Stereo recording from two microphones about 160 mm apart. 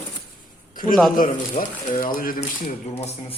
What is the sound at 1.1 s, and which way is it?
Speech, 60° left (ahead or behind).